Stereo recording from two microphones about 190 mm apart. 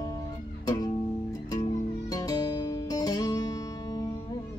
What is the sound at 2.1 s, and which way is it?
Music, 20° left (ahead or behind).